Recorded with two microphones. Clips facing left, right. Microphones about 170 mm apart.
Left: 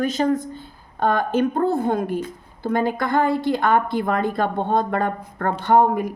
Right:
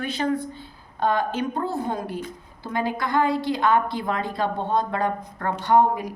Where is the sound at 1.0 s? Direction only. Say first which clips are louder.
Left 4 dB; 55° left (ahead or behind).